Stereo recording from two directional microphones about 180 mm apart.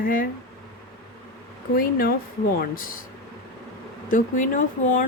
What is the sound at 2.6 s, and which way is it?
Speech, 50° left (ahead or behind).